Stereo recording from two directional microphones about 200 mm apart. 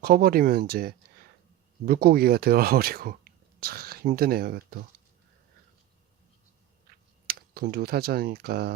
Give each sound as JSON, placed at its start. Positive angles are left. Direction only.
{"t": 0.0, "sound": "speech", "side_deg": -50}
{"t": 7.3, "sound": "speech", "side_deg": -50}